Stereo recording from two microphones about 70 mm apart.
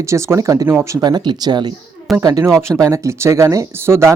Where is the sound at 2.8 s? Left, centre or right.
Right.